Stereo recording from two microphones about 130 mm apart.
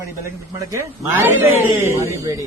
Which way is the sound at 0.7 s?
20° right (ahead or behind).